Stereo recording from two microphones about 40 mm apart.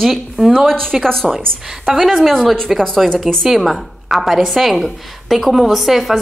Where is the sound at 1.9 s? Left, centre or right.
Centre.